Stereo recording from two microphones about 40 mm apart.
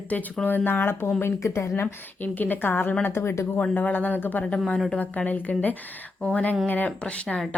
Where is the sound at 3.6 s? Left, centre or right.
Left.